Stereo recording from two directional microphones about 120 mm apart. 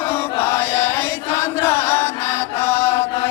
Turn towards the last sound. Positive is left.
turn(degrees=20)  # may be behind; listen again after turning